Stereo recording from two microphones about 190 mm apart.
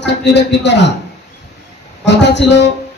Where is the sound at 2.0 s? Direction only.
65° left (ahead or behind).